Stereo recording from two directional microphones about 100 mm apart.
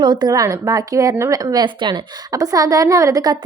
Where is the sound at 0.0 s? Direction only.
45° right (ahead or behind).